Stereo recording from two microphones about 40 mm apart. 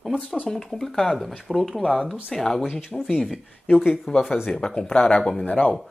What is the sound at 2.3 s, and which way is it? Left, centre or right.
Speech, centre.